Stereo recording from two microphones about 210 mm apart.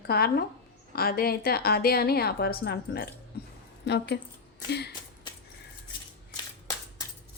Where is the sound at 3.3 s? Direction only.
50° left (ahead or behind).